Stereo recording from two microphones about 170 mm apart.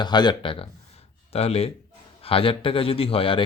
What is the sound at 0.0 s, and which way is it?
Speech, 25° left (ahead or behind).